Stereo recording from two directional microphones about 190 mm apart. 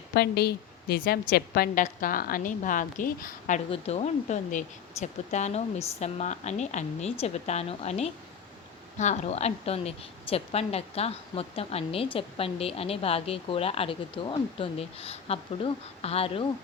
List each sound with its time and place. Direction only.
0.1 s a woman's voice: 55° left (ahead or behind)
3.7 s speech: 30° left (ahead or behind)